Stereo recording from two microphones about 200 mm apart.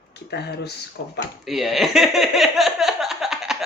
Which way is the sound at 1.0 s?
70° left (ahead or behind).